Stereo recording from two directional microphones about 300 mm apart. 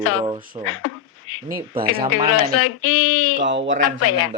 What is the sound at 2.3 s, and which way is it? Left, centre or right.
Speech, left.